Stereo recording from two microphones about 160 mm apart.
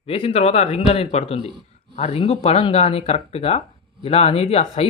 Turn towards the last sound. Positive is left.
turn(degrees=40)  # may be behind; listen again after turning